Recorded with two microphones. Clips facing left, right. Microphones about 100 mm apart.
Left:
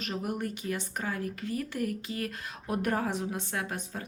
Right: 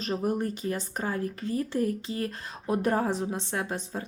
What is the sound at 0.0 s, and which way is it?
A woman's voice, 35° right (ahead or behind).